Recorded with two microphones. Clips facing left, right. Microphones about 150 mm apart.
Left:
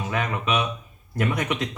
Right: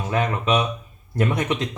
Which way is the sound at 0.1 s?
35° right (ahead or behind).